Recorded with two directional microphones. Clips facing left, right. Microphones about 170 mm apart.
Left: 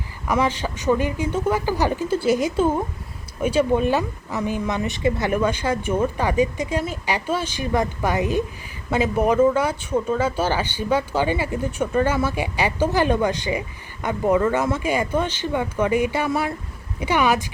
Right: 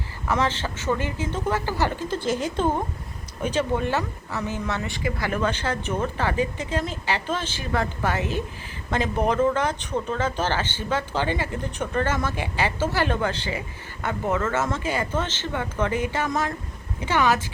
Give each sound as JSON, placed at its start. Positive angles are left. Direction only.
{"t": 0.3, "sound": "speech", "side_deg": 10}